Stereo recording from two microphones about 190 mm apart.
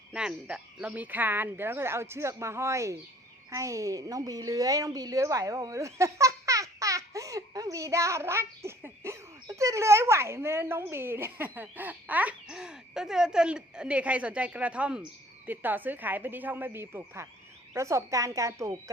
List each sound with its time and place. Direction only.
0.1 s a woman's voice: 5° right (ahead or behind)